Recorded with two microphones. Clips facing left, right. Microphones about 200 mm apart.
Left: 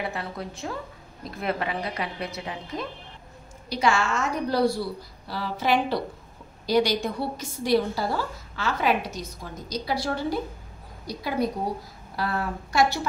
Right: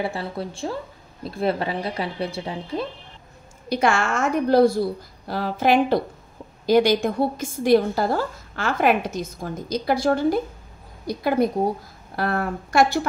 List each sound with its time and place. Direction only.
0.0 s a woman's voice: 30° right (ahead or behind)
3.6 s a woman's voice: 55° right (ahead or behind)